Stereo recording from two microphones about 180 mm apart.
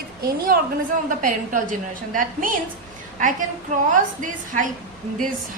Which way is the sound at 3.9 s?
45° right (ahead or behind).